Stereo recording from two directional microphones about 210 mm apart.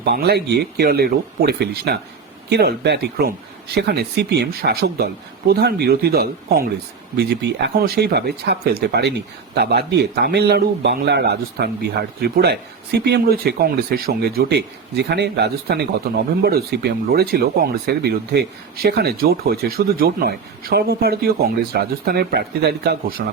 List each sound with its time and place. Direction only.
0.0 s speech: 50° right (ahead or behind)